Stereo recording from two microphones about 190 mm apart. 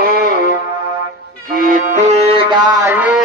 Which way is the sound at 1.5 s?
45° right (ahead or behind).